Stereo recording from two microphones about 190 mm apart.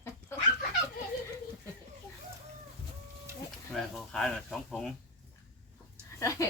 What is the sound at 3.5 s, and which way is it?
Speech, centre (ahead or behind).